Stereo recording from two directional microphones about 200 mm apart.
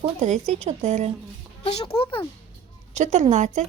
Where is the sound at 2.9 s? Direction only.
35° right (ahead or behind).